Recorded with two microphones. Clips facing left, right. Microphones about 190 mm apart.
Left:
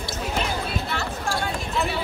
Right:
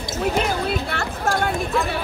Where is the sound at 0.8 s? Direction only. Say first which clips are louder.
Right 4 dB; 55° right (ahead or behind).